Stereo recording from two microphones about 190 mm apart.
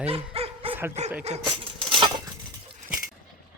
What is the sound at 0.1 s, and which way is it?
Bow-wow, 30° right (ahead or behind).